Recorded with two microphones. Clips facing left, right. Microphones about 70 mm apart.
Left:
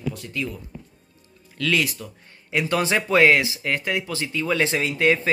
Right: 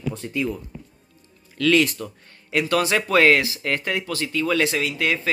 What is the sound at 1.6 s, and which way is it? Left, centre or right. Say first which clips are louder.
Speech: right 5 dB; centre.